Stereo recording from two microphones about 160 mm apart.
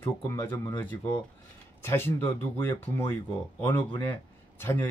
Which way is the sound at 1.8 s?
15° left (ahead or behind).